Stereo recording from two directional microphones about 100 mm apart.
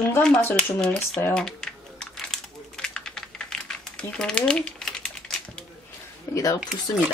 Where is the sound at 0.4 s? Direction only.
25° left (ahead or behind).